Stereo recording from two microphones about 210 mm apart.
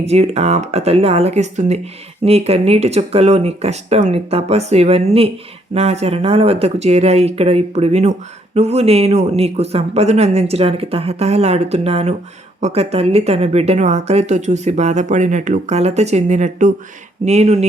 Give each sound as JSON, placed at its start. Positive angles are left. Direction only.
{"t": 0.0, "sound": "speech", "side_deg": -30}